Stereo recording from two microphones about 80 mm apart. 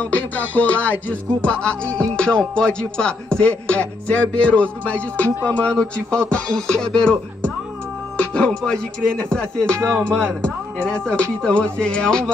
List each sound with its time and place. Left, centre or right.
0.0 s music: centre